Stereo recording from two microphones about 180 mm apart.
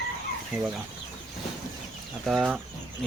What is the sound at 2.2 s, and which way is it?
Speech, centre (ahead or behind).